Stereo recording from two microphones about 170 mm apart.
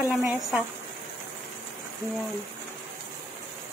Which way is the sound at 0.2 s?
20° right (ahead or behind).